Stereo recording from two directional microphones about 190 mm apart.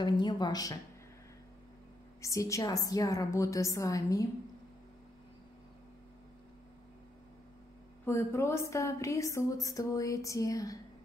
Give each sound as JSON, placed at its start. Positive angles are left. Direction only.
{"t": 0.0, "sound": "a woman's voice", "side_deg": 25}
{"t": 2.2, "sound": "a woman's voice", "side_deg": 15}
{"t": 8.0, "sound": "a woman's voice", "side_deg": 15}